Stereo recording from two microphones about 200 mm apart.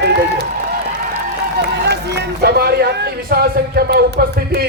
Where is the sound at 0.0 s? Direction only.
55° right (ahead or behind).